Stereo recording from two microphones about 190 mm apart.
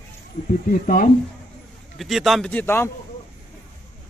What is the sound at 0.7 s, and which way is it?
Speech, 45° left (ahead or behind).